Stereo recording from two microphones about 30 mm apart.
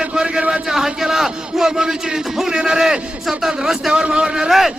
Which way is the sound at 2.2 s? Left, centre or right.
Centre.